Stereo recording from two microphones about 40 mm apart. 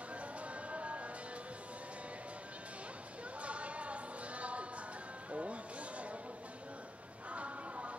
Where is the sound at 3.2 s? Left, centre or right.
Right.